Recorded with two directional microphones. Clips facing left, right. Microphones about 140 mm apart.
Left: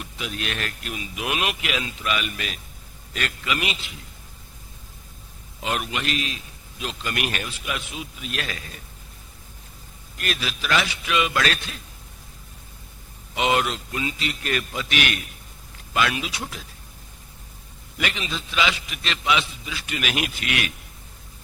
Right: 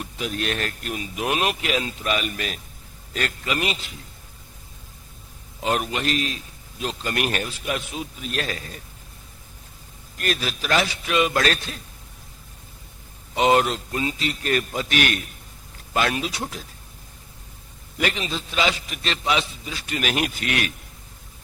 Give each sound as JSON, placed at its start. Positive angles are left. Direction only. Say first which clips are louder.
{"t": 0.0, "sound": "a man's voice", "louder": "right 4 dB", "side_deg": -40}
{"t": 5.6, "sound": "a man's voice", "louder": "right 3 dB", "side_deg": -40}
{"t": 10.2, "sound": "a man's voice", "louder": "right 3 dB", "side_deg": -40}
{"t": 13.3, "sound": "a man's voice", "louder": "right 4 dB", "side_deg": -40}
{"t": 17.9, "sound": "a man's voice", "louder": "right 3 dB", "side_deg": -40}